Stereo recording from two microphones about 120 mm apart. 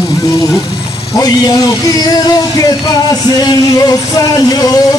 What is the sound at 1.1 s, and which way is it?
Music, 30° left (ahead or behind).